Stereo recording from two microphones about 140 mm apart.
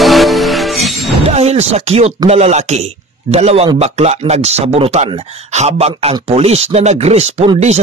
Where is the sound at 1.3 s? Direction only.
50° right (ahead or behind).